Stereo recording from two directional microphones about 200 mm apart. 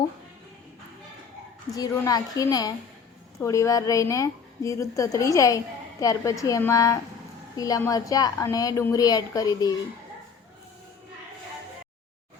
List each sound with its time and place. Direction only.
1.7 s a woman's voice: 15° left (ahead or behind)